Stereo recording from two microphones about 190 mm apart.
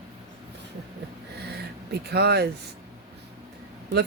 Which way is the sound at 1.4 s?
60° right (ahead or behind).